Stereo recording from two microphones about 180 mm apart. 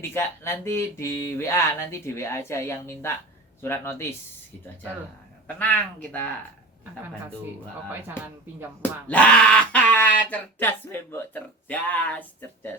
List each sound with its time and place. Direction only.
0.0 s speech: 15° left (ahead or behind)
5.5 s speech: 10° left (ahead or behind)
8.8 s speech: 5° left (ahead or behind)